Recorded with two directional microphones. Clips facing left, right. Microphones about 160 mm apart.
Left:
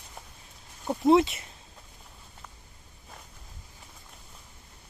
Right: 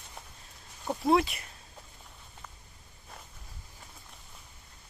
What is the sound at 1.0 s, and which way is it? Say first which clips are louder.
Speech: left 5 dB; 25° left (ahead or behind).